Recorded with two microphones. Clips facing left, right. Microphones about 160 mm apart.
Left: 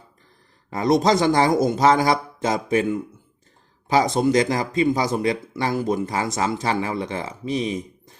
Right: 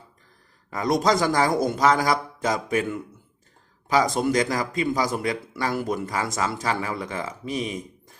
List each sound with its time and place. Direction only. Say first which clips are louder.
0.7 s a man's voice: left 3 dB; 25° left (ahead or behind)